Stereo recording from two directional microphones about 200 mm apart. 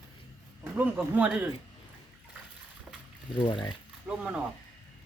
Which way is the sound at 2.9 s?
5° right (ahead or behind).